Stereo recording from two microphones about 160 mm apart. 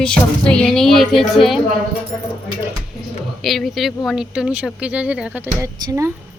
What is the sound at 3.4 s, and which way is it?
Speech, centre (ahead or behind).